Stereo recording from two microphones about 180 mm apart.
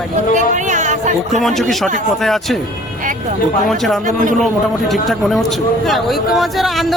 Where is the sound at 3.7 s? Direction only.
Centre (ahead or behind).